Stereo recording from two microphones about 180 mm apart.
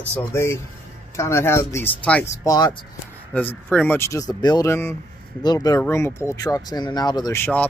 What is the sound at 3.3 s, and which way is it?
Speech, 10° left (ahead or behind).